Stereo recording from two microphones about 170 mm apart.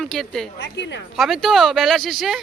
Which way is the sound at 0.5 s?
90° left.